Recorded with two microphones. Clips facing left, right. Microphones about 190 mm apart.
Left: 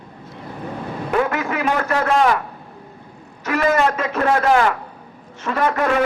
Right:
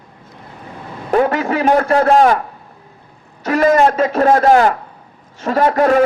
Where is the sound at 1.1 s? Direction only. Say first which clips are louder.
Right 6 dB; 35° right (ahead or behind).